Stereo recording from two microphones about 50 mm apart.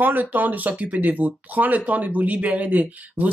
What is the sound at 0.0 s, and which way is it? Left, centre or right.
Speech, right.